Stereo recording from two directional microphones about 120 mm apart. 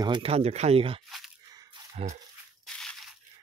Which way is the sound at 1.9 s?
70° right (ahead or behind).